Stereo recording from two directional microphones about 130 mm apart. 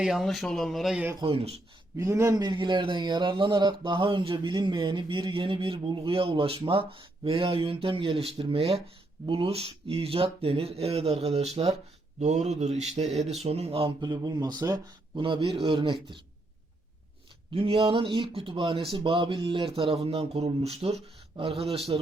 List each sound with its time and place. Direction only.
0.0 s speech: centre (ahead or behind)
1.2 s speech: 45° right (ahead or behind)
2.0 s a man's voice: 20° right (ahead or behind); by 13.9 s 50° right (ahead or behind)
14.0 s speech: 30° right (ahead or behind)
17.5 s speech: 45° right (ahead or behind)